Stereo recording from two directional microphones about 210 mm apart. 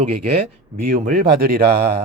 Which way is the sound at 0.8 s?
40° right (ahead or behind).